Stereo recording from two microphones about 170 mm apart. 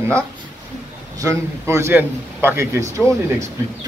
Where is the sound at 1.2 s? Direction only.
20° right (ahead or behind).